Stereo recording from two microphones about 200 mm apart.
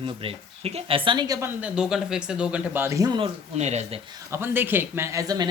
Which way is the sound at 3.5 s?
35° right (ahead or behind).